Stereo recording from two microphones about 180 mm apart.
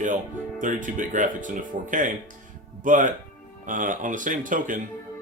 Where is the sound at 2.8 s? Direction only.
45° right (ahead or behind).